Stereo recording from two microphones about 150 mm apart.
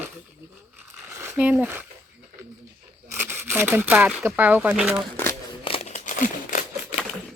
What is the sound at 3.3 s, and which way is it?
Speech, 15° right (ahead or behind).